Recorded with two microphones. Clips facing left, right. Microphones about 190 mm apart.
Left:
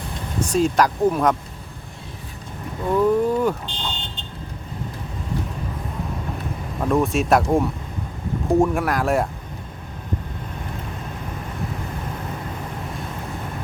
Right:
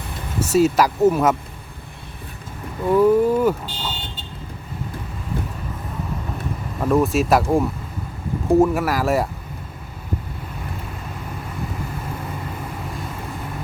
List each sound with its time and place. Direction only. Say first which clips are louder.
0.3 s speech: right 2 dB; 5° right (ahead or behind)
2.8 s vehicle: right 3 dB; 5° right (ahead or behind)
6.7 s speech: right 2 dB; centre (ahead or behind)